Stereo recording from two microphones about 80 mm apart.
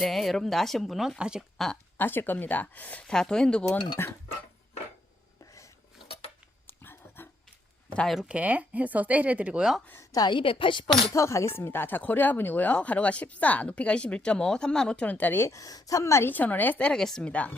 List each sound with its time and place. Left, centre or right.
0.0 s a woman's voice: centre
1.5 s speech: centre
2.0 s speech: left
3.0 s a woman's voice: centre
4.0 s speech: left
6.7 s dog: left
8.3 s speech: centre
9.9 s a sound: left
10.2 s a woman's voice: left
11.1 s speech: left
15.4 s a woman's voice: left
16.3 s a woman's voice: left